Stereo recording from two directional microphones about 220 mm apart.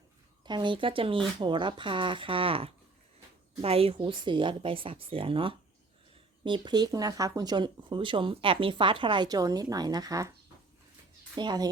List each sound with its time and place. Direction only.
0.4 s speech: 20° right (ahead or behind)
11.3 s speech: 20° right (ahead or behind)